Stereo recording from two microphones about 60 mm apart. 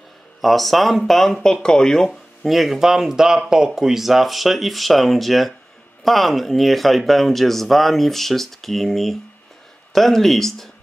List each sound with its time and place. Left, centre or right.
0.4 s speech: centre
2.4 s speech: centre